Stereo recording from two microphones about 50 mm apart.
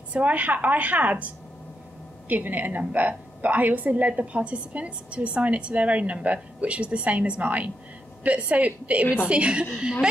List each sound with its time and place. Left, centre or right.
0.1 s a woman's voice: right